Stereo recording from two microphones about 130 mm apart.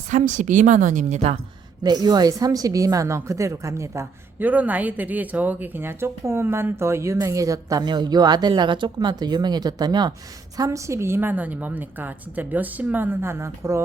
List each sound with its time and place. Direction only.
0.1 s a woman's voice: 70° right (ahead or behind)
1.8 s a woman's voice: 30° right (ahead or behind)